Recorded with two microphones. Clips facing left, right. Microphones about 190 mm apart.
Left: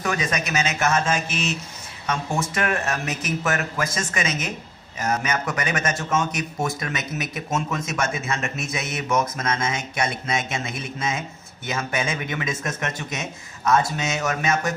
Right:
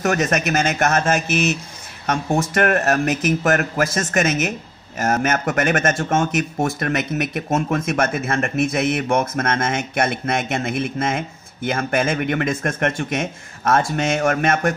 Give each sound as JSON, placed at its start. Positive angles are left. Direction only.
{"t": 0.2, "sound": "a man's voice", "side_deg": -55}
{"t": 2.5, "sound": "a man's voice", "side_deg": -55}